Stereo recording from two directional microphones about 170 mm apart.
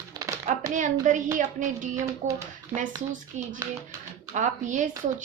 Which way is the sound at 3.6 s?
20° right (ahead or behind).